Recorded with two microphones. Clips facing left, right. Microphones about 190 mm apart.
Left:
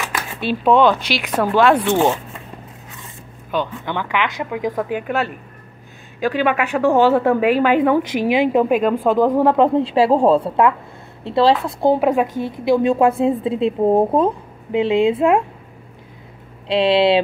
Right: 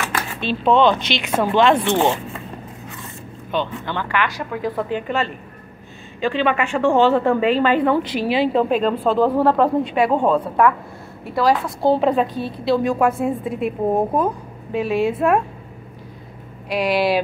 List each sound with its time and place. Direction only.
0.0 s a woman's voice: 10° left (ahead or behind)
3.5 s a woman's voice: 15° left (ahead or behind)
11.8 s a woman's voice: 15° left (ahead or behind)
16.6 s a woman's voice: 25° left (ahead or behind)